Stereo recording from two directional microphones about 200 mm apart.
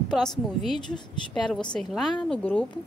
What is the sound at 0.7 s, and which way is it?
Speech, 20° left (ahead or behind).